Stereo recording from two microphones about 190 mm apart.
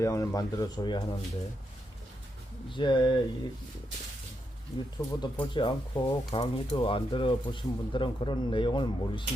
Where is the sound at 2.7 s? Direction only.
25° left (ahead or behind).